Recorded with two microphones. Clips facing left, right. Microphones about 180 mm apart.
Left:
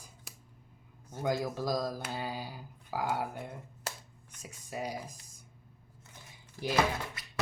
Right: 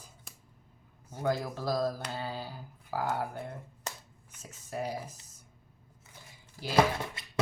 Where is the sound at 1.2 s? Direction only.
15° left (ahead or behind).